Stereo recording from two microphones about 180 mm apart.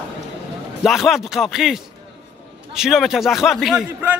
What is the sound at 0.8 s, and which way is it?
A man's voice, centre (ahead or behind).